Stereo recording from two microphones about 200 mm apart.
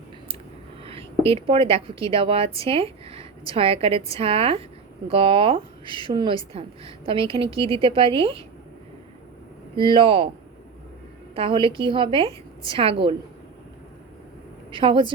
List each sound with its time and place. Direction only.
0.9 s a woman's voice: 30° right (ahead or behind)
9.7 s a woman's voice: 25° right (ahead or behind)
11.3 s a woman's voice: 25° right (ahead or behind)
14.7 s a woman's voice: 25° right (ahead or behind)